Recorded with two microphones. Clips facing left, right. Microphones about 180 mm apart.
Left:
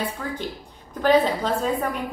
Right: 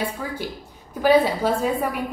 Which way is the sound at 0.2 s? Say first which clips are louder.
Right 1 dB; 10° right (ahead or behind).